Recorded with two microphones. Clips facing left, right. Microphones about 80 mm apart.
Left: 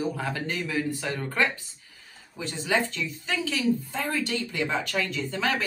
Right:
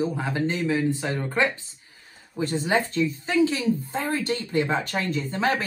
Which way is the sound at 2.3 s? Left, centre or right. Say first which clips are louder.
Right 3 dB; right.